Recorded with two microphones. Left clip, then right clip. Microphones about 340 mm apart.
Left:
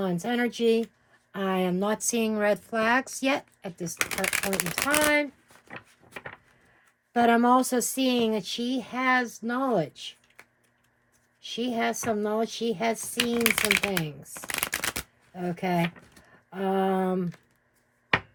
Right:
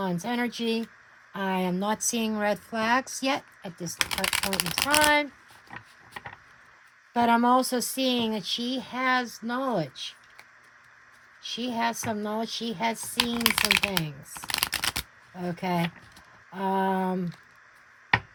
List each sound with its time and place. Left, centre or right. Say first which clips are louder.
0.0 s speech: left 2 dB; right
7.1 s speech: left 1 dB; right
11.4 s speech: even; right
14.3 s shuffling cards: right 2 dB; centre
16.5 s speech: even; right